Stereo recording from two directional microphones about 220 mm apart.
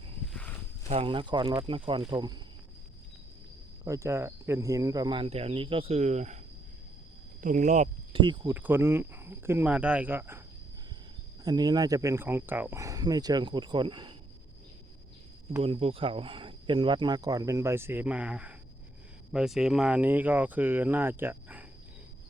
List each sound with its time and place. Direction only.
0.9 s speech: 25° right (ahead or behind)
3.8 s speech: 15° right (ahead or behind); by 6.4 s 30° right (ahead or behind)
7.4 s speech: 35° right (ahead or behind); by 8.5 s 20° right (ahead or behind)
8.5 s speech: 10° right (ahead or behind)
11.4 s speech: 20° right (ahead or behind)
15.6 s speech: 25° right (ahead or behind); by 21.6 s 10° right (ahead or behind)